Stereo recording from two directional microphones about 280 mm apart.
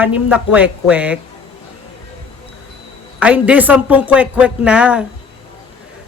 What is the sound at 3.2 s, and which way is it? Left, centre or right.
Speech, centre.